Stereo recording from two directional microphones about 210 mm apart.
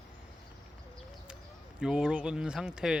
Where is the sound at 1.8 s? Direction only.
5° right (ahead or behind).